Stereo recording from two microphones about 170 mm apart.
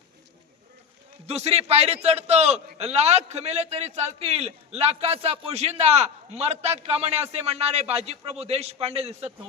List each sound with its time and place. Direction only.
1.3 s a man's voice: 40° right (ahead or behind)